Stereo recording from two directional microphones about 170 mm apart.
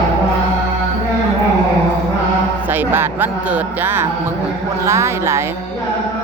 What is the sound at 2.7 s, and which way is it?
Speech, 10° right (ahead or behind).